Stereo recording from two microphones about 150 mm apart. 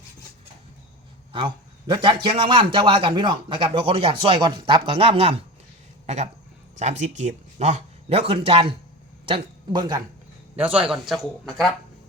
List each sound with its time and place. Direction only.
1.3 s a man's voice: 30° right (ahead or behind)
6.7 s speech: 50° right (ahead or behind); by 10.0 s 30° right (ahead or behind)
10.6 s speech: 10° right (ahead or behind)